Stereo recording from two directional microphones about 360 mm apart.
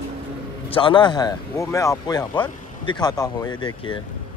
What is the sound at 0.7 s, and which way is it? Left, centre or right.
Speech, centre.